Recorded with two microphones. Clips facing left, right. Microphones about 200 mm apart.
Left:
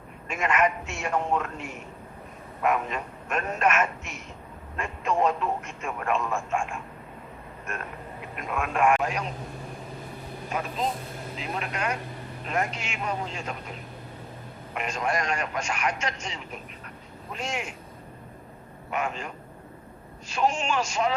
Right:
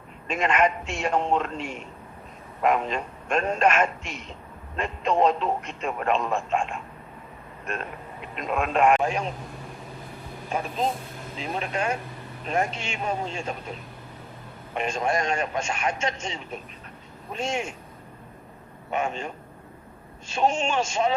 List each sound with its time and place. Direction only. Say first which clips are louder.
0.3 s speech: right 2 dB; 30° right (ahead or behind)
8.4 s speech: right 3 dB; 25° right (ahead or behind)
11.3 s speech: right 4 dB; 25° right (ahead or behind)
14.8 s speech: right 3 dB; 25° right (ahead or behind)
18.9 s speech: right 2 dB; 25° right (ahead or behind)